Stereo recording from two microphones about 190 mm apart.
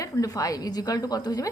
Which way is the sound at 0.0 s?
20° left (ahead or behind).